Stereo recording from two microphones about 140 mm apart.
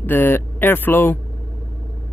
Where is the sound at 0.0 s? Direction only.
15° left (ahead or behind).